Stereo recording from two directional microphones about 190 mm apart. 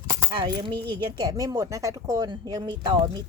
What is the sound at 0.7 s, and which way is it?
Speech, 60° right (ahead or behind).